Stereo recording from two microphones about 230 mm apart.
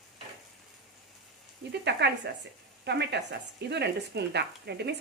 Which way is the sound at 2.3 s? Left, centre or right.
Right.